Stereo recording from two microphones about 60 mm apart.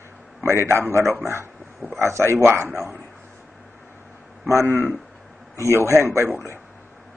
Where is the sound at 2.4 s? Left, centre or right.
Right.